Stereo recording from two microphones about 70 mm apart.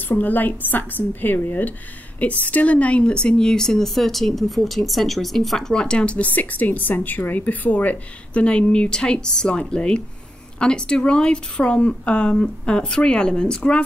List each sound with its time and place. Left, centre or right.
0.1 s a woman's voice: left